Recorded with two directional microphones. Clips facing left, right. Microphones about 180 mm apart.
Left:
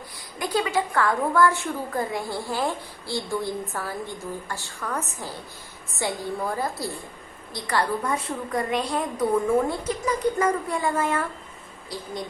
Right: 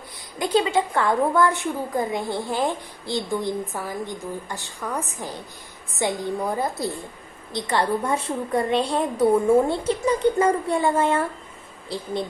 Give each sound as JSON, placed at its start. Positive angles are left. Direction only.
{"t": 0.3, "sound": "a woman's voice", "side_deg": -25}